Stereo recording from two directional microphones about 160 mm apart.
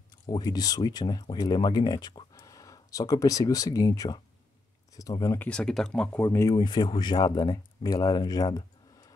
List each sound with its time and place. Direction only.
0.3 s speech: 25° left (ahead or behind)
5.4 s speech: 5° left (ahead or behind); by 9.1 s 25° left (ahead or behind)